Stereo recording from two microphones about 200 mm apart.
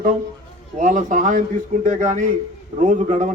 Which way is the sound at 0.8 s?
40° right (ahead or behind).